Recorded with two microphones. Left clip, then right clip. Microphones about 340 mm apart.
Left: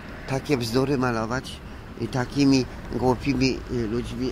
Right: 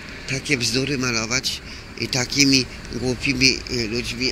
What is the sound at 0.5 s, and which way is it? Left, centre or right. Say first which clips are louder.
Speech: right 2 dB; centre.